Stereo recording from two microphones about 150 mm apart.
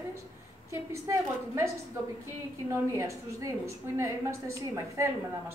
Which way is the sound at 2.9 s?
20° right (ahead or behind).